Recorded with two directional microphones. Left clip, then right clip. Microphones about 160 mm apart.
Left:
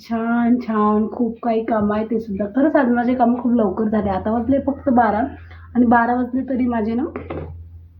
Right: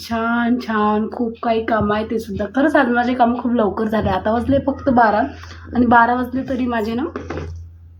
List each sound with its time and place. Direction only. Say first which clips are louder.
0.1 s speech: right 1 dB; centre (ahead or behind)
6.0 s speech: right 4 dB; centre (ahead or behind)